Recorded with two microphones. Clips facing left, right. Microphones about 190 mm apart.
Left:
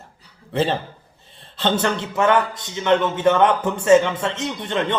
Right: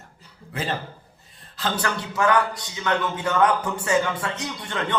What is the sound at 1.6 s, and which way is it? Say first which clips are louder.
A man's voice: left 6 dB; 25° left (ahead or behind).